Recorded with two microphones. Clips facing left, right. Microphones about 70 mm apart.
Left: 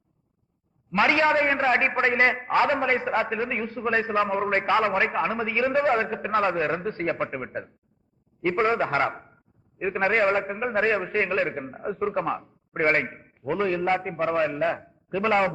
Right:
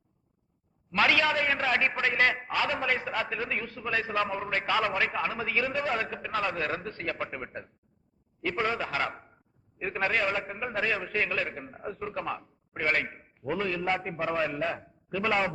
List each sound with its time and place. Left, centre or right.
0.9 s a man's voice: left
5.7 s a man's voice: left
7.3 s a man's voice: centre
8.4 s a man's voice: left
9.7 s a man's voice: centre
10.0 s a man's voice: left
11.9 s a man's voice: left
13.1 s a man's voice: centre
13.6 s a man's voice: left
14.2 s a man's voice: centre